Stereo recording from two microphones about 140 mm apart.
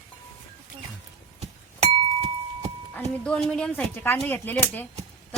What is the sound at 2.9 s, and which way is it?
A woman's voice, 5° left (ahead or behind).